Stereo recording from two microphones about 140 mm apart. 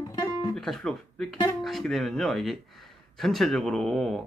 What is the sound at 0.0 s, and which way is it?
Guitar, 25° left (ahead or behind).